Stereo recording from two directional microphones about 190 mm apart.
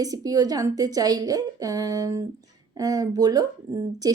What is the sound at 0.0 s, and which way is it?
Speech, 20° right (ahead or behind).